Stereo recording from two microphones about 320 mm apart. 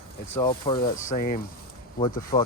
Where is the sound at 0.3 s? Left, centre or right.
Centre.